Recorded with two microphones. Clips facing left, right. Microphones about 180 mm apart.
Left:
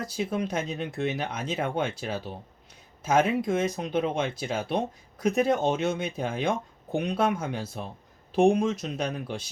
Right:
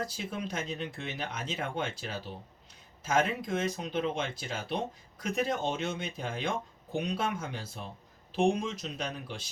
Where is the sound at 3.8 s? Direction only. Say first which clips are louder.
Left 5 dB; 50° left (ahead or behind).